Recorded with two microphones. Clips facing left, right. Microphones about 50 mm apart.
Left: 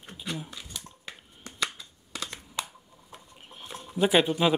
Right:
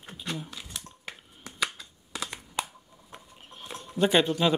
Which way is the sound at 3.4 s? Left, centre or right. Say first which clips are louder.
Even; centre.